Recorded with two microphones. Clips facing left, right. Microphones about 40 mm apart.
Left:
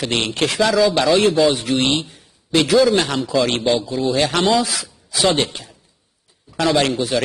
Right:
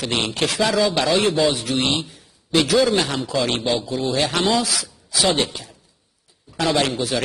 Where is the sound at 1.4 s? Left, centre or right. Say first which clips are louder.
Left 3 dB; left.